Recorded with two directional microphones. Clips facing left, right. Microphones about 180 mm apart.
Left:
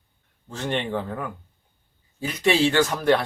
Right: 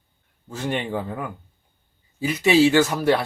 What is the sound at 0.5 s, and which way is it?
A man's voice, 10° right (ahead or behind).